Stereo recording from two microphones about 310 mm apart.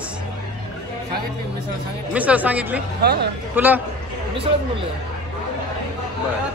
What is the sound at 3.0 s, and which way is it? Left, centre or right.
Speech, right.